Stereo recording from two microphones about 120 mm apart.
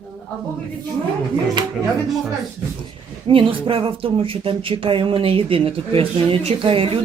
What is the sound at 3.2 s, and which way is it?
Speech, 45° right (ahead or behind).